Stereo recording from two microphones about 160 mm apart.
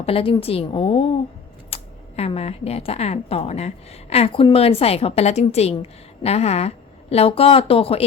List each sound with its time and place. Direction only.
0.0 s speech: 35° left (ahead or behind)